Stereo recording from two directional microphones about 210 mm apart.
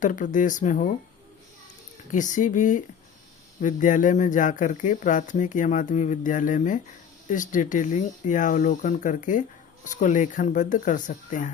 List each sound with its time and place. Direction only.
0.0 s speech: 40° left (ahead or behind)
2.1 s speech: 35° left (ahead or behind)